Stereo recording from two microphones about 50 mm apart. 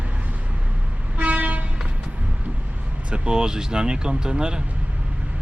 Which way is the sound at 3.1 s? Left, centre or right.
Centre.